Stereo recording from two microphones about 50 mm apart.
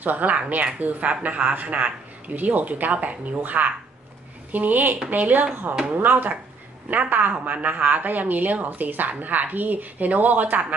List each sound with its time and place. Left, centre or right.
0.0 s speech: right
5.5 s speech: right